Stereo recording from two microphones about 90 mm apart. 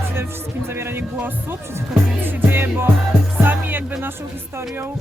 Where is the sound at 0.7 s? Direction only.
25° right (ahead or behind).